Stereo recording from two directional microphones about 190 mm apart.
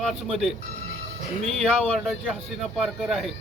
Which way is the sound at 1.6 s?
Centre (ahead or behind).